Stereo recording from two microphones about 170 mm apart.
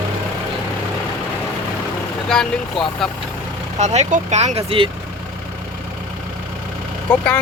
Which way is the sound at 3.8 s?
40° right (ahead or behind).